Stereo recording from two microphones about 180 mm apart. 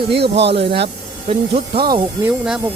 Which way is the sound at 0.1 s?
70° right (ahead or behind).